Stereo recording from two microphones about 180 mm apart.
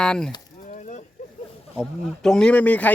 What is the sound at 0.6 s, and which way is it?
Chop, 45° left (ahead or behind).